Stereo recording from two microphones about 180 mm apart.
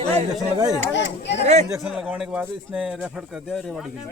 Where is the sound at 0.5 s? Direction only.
20° right (ahead or behind).